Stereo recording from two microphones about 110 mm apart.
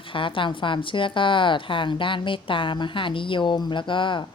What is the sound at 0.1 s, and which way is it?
A woman's voice, 50° left (ahead or behind).